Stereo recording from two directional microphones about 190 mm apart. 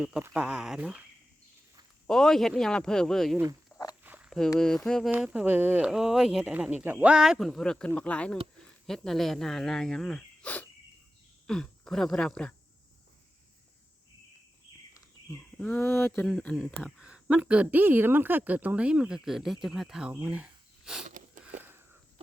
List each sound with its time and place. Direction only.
0.0 s speech: 10° right (ahead or behind)
2.0 s speech: 5° left (ahead or behind)
3.7 s walk: 10° left (ahead or behind)
4.0 s speech: 10° right (ahead or behind)
15.5 s speech: 10° left (ahead or behind)
21.1 s a sound: 45° right (ahead or behind)
21.6 s a sound: 10° right (ahead or behind)